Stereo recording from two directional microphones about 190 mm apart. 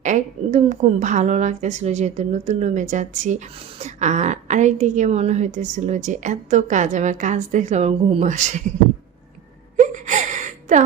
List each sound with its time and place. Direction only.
0.0 s a woman's voice: 40° right (ahead or behind)
9.7 s gasp: 40° right (ahead or behind)